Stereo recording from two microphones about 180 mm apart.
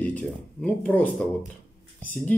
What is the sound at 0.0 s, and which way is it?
Speech, 5° left (ahead or behind).